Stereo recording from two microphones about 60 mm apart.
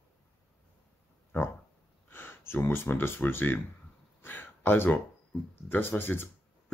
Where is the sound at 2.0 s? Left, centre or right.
Left.